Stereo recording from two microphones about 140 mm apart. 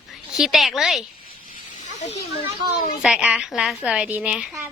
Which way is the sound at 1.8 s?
55° left (ahead or behind).